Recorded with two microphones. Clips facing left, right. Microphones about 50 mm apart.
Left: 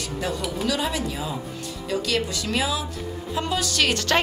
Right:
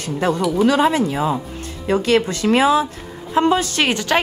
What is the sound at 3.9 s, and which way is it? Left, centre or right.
Speech, centre.